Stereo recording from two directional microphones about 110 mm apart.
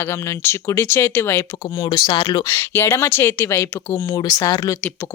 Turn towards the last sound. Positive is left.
turn(degrees=35)  # may be behind; listen again after turning